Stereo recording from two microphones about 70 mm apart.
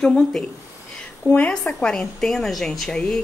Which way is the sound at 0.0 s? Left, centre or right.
Centre.